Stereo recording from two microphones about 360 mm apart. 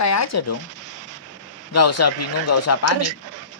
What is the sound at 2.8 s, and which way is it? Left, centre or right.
Speech, right.